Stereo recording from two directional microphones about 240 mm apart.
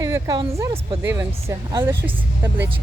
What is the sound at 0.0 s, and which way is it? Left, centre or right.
Speech, centre.